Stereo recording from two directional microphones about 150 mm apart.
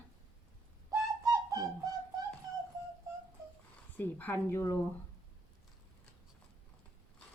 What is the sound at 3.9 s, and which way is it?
Speech, 15° left (ahead or behind).